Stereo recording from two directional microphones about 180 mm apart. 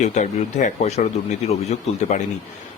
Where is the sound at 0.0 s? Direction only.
40° left (ahead or behind).